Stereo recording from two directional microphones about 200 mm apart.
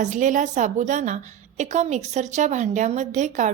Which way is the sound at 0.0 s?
40° right (ahead or behind).